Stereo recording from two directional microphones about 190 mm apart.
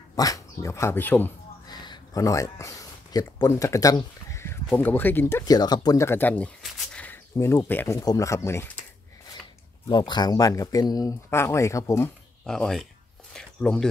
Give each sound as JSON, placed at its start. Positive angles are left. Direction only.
{"t": 0.1, "sound": "speech", "side_deg": 20}
{"t": 1.7, "sound": "speech", "side_deg": 20}
{"t": 9.8, "sound": "speech", "side_deg": 25}
{"t": 12.4, "sound": "speech", "side_deg": 5}
{"t": 13.3, "sound": "a sound", "side_deg": 0}